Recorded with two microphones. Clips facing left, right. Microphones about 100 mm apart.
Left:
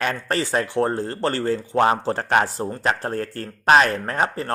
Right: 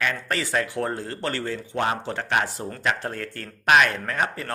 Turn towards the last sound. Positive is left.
turn(degrees=35)  # may be behind; listen again after turning